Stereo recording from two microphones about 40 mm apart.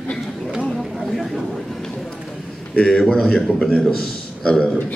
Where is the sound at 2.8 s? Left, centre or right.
Centre.